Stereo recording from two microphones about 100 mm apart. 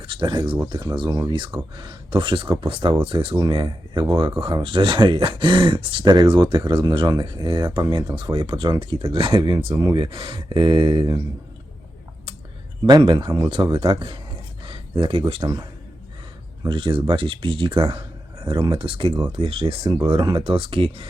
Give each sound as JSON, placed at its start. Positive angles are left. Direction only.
{"t": 0.0, "sound": "speech", "side_deg": -55}
{"t": 0.7, "sound": "speech", "side_deg": -40}
{"t": 9.4, "sound": "speech", "side_deg": -55}
{"t": 12.8, "sound": "speech", "side_deg": -50}
{"t": 13.5, "sound": "speech", "side_deg": -60}
{"t": 14.6, "sound": "a sound", "side_deg": -60}
{"t": 15.4, "sound": "speech", "side_deg": -35}
{"t": 16.6, "sound": "speech", "side_deg": -55}
{"t": 18.4, "sound": "speech", "side_deg": -50}
{"t": 19.4, "sound": "speech", "side_deg": -75}
{"t": 19.9, "sound": "speech", "side_deg": -60}